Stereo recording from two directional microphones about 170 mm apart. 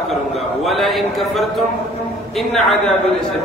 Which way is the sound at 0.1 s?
Centre (ahead or behind).